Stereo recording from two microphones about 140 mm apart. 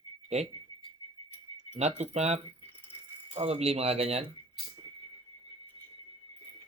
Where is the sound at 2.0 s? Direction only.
50° right (ahead or behind).